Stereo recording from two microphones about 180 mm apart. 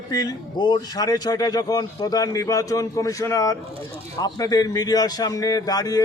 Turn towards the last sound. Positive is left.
turn(degrees=20)  # may be behind; listen again after turning